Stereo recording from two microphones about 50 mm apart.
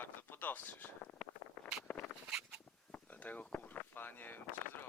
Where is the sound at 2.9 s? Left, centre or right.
Left.